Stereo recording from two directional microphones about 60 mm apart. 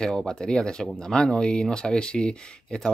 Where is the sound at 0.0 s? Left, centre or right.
Centre.